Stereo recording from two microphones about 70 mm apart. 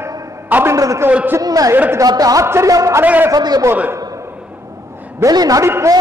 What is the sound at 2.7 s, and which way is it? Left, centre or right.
Speech, right.